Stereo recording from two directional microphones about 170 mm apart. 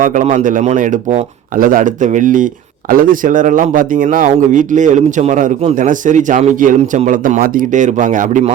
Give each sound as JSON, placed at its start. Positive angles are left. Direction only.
{"t": 0.0, "sound": "speech", "side_deg": -50}